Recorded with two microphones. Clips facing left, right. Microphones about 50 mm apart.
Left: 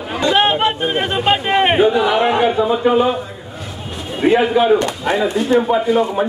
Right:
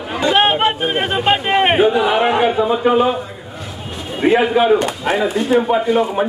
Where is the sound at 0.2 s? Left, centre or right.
Centre.